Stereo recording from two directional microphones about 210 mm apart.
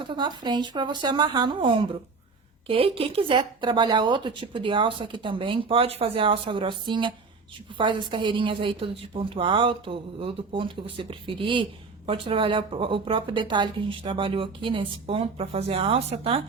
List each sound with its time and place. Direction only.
0.0 s speech: 20° right (ahead or behind)